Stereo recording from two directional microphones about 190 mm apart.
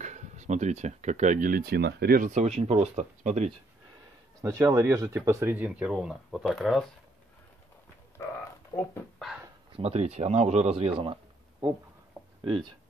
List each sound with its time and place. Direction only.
0.0 s speech: 40° right (ahead or behind)
4.4 s speech: 15° right (ahead or behind); by 6.9 s centre (ahead or behind)
8.7 s speech: 15° left (ahead or behind)
9.7 s speech: 30° right (ahead or behind)
12.4 s speech: 25° right (ahead or behind)